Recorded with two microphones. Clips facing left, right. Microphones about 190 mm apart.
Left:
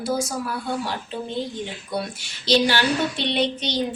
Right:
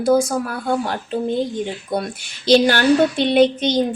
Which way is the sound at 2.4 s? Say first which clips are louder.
Right 6 dB; 50° right (ahead or behind).